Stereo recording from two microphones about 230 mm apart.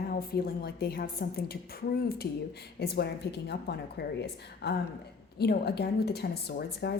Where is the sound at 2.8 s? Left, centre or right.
Left.